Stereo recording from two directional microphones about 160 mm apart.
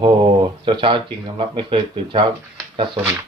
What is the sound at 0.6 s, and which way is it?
Speech, 30° right (ahead or behind).